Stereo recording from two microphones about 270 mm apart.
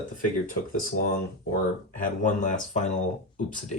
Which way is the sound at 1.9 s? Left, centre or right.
Left.